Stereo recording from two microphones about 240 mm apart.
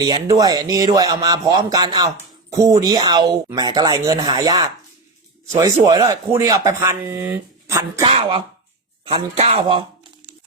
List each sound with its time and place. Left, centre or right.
0.0 s speech: centre
5.9 s speech: centre
8.0 s a man's voice: right